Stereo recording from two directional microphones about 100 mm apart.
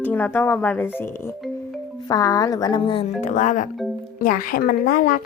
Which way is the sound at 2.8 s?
60° left (ahead or behind).